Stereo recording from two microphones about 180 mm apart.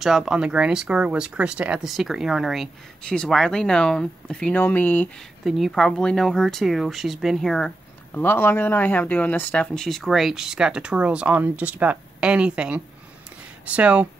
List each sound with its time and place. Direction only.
0.0 s speech: centre (ahead or behind)
5.4 s speech: centre (ahead or behind)